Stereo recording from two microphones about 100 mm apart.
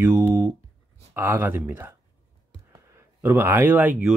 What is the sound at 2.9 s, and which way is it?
Speech, 25° right (ahead or behind).